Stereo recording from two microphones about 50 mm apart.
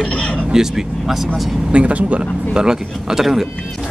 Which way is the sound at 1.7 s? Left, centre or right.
Right.